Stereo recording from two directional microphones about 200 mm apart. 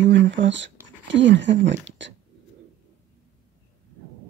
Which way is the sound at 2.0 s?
65° right (ahead or behind).